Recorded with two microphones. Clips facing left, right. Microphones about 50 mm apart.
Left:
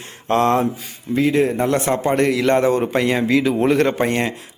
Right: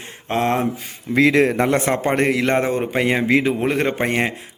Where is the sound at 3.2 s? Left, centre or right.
Right.